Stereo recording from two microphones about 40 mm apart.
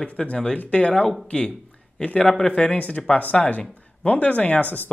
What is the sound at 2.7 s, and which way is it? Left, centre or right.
Speech, left.